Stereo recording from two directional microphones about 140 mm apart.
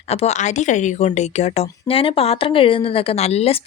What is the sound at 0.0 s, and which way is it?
Speech, 50° left (ahead or behind).